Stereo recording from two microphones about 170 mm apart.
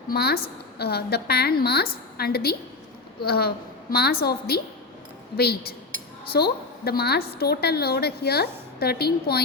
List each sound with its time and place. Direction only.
0.1 s a woman's voice: 65° left (ahead or behind)